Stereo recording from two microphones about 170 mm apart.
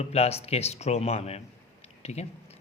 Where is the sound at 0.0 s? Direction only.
40° left (ahead or behind).